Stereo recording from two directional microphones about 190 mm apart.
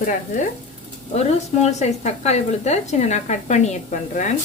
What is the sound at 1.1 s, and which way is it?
Speech, 35° left (ahead or behind).